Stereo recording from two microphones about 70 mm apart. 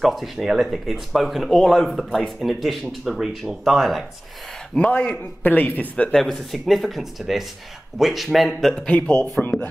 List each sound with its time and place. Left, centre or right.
0.0 s speech: centre
4.7 s a man's voice: centre
6.1 s speech: centre